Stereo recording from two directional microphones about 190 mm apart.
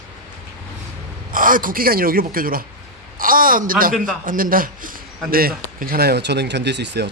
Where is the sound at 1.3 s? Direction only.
45° right (ahead or behind).